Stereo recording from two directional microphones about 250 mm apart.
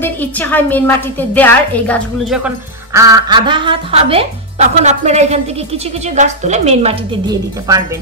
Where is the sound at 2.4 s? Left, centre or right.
Centre.